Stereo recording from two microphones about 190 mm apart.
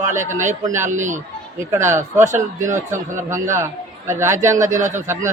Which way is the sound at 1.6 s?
15° right (ahead or behind).